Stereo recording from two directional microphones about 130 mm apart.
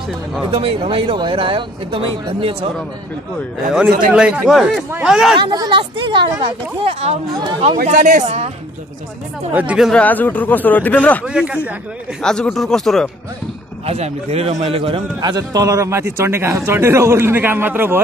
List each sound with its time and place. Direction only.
0.5 s speech: 45° right (ahead or behind)
4.1 s a man's voice: 10° right (ahead or behind)
5.4 s speech: 35° right (ahead or behind); by 7.2 s 50° right (ahead or behind)
7.6 s speech: 75° right (ahead or behind)
9.5 s a man's voice: 10° right (ahead or behind)
9.8 s speech: 10° left (ahead or behind)
11.2 s a man's voice: 5° right (ahead or behind)
12.2 s speech: 5° left (ahead or behind)
13.8 s speech: 55° right (ahead or behind)
15.3 s a man's voice: 25° right (ahead or behind)